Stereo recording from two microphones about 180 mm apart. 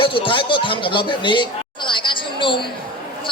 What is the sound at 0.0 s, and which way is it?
A man's voice, 30° left (ahead or behind).